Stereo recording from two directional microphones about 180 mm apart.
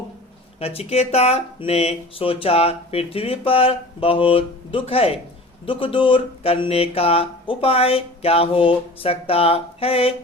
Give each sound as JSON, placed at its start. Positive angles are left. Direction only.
{"t": 0.6, "sound": "speech", "side_deg": 35}